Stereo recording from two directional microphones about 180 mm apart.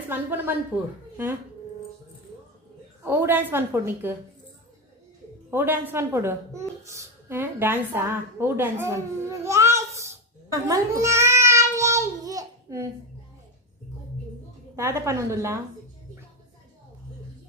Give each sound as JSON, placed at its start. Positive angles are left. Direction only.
{"t": 0.1, "sound": "a woman's voice", "side_deg": -10}
{"t": 3.0, "sound": "a woman's voice", "side_deg": -10}
{"t": 5.5, "sound": "a woman's voice", "side_deg": -10}
{"t": 10.5, "sound": "child singing", "side_deg": -15}
{"t": 14.8, "sound": "a woman's voice", "side_deg": -15}